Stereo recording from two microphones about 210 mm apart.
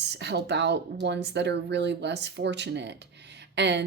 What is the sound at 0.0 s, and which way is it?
Speech, 55° right (ahead or behind).